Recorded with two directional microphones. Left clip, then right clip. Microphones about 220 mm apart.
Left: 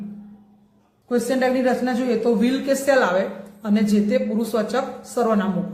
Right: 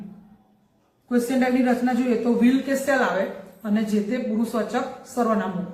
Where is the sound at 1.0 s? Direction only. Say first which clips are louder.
Left 3 dB; 45° left (ahead or behind).